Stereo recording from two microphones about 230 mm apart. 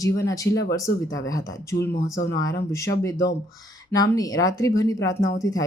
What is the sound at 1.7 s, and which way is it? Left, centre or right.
Speech, left.